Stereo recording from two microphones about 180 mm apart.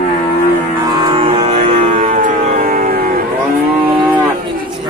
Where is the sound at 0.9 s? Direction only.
25° right (ahead or behind).